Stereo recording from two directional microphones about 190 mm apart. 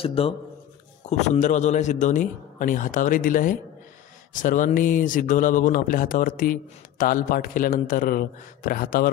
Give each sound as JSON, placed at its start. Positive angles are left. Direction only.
{"t": 0.0, "sound": "a man's voice", "side_deg": 30}